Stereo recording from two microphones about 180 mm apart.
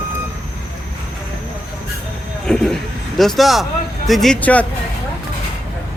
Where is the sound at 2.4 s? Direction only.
Centre (ahead or behind).